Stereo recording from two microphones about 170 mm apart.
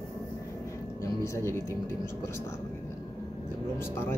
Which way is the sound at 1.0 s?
15° left (ahead or behind).